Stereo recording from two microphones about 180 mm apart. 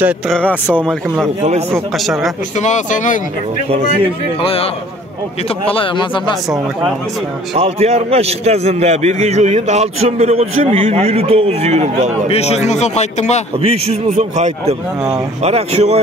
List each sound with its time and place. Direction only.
0.3 s a man's voice: 5° left (ahead or behind)
2.6 s speech: 45° left (ahead or behind)
4.4 s speech: 30° left (ahead or behind)
5.7 s speech: 30° left (ahead or behind)
7.5 s a man's voice: 35° right (ahead or behind)
12.3 s speech: 35° left (ahead or behind)
13.6 s a man's voice: 35° right (ahead or behind)